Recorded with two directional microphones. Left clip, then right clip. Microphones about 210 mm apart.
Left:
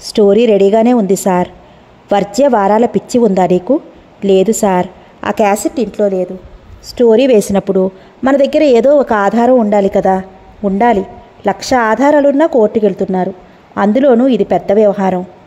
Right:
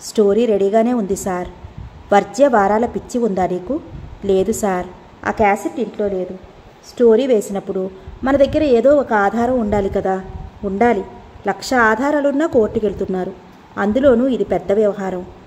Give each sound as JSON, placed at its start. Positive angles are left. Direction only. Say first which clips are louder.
{"t": 0.1, "sound": "a woman's voice", "louder": "left 6 dB", "side_deg": 30}